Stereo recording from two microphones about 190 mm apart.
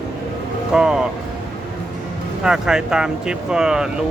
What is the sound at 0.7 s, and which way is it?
Speech, 5° right (ahead or behind).